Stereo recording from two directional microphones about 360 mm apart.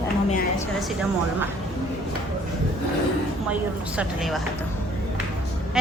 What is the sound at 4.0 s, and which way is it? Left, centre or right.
Speech, centre.